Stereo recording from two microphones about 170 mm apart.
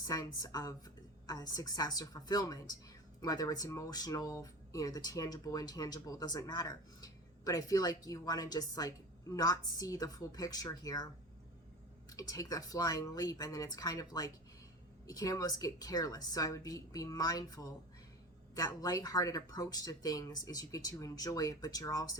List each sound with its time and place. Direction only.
0.0 s speech: 20° left (ahead or behind)
12.1 s speech: 20° left (ahead or behind)